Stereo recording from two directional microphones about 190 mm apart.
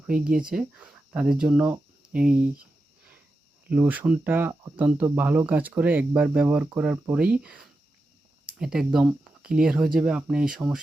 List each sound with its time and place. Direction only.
0.3 s speech: 45° right (ahead or behind)
0.5 s speech: 5° right (ahead or behind)
3.7 s speech: 10° right (ahead or behind)